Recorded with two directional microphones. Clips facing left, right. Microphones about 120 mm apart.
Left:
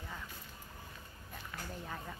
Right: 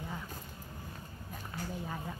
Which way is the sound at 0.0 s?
15° right (ahead or behind).